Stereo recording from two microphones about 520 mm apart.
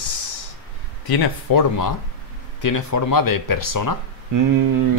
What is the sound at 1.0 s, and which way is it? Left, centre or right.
Speech, left.